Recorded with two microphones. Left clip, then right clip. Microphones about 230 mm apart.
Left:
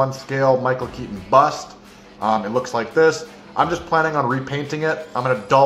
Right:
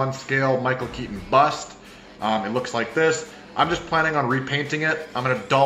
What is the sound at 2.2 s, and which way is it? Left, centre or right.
A man's voice, centre.